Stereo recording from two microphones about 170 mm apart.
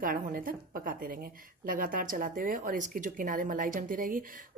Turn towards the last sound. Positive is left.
turn(degrees=-55)  # may be behind; listen again after turning